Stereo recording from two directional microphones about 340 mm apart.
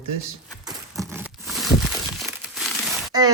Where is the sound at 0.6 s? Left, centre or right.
Centre.